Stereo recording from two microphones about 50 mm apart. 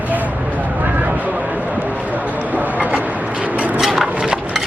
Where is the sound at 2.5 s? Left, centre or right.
Right.